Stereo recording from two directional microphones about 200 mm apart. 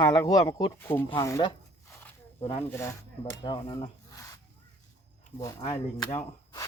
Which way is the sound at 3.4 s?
20° left (ahead or behind).